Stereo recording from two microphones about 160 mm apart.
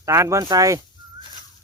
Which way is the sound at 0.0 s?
20° right (ahead or behind).